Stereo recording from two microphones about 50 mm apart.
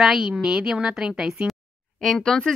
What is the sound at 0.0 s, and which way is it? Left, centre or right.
Speech, centre.